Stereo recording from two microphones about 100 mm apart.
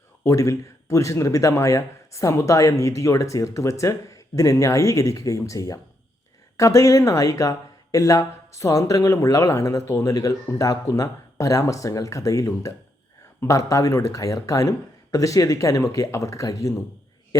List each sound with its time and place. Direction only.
0.3 s speech: 30° left (ahead or behind)